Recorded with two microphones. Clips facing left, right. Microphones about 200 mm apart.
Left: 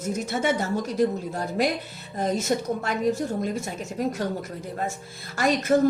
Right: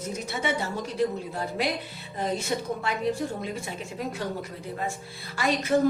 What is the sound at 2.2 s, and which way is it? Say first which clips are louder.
A woman's voice: left 4 dB; 45° left (ahead or behind).